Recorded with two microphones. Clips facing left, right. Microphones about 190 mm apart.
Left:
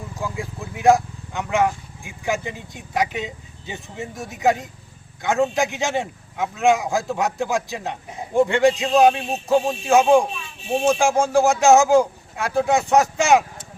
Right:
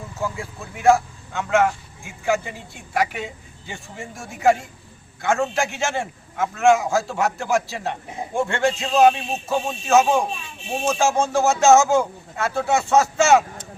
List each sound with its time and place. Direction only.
0.2 s a man's voice: 15° left (ahead or behind)